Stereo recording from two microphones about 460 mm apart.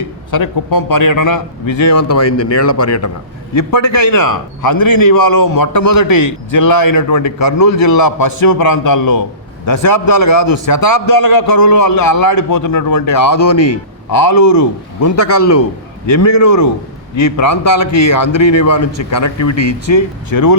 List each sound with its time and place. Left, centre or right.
0.3 s a man's voice: left